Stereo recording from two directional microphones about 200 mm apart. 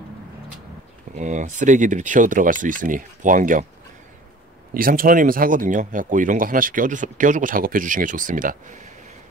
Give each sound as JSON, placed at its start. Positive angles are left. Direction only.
{"t": 1.1, "sound": "speech", "side_deg": -40}
{"t": 4.7, "sound": "speech", "side_deg": -45}